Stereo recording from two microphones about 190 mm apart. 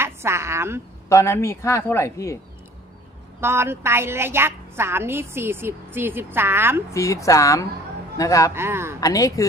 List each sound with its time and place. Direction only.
0.0 s a woman's voice: 15° right (ahead or behind)
1.0 s a man's voice: 15° left (ahead or behind)
3.3 s a woman's voice: 10° right (ahead or behind)
6.9 s a man's voice: 15° left (ahead or behind)
8.5 s a woman's voice: 15° right (ahead or behind)
9.0 s a man's voice: 20° left (ahead or behind)